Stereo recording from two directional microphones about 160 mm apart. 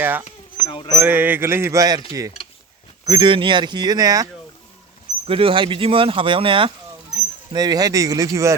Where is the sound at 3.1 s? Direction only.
30° right (ahead or behind).